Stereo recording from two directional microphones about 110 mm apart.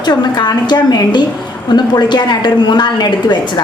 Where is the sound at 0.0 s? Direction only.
40° left (ahead or behind).